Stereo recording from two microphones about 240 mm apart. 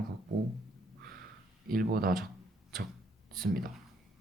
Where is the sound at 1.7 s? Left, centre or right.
Right.